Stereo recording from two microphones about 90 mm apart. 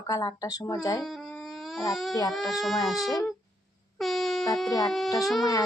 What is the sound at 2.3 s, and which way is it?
Speech, centre (ahead or behind).